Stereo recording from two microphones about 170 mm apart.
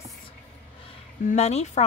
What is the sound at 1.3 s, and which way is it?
Speech, 40° left (ahead or behind).